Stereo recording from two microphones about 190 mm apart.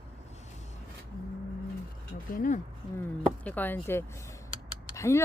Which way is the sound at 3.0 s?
10° left (ahead or behind).